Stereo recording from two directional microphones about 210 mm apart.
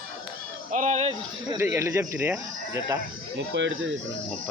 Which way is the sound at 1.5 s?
10° right (ahead or behind).